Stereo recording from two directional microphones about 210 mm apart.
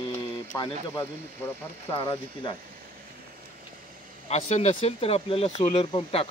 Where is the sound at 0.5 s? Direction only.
15° left (ahead or behind).